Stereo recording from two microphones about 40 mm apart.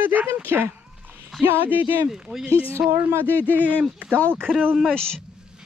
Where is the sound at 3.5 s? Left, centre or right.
Right.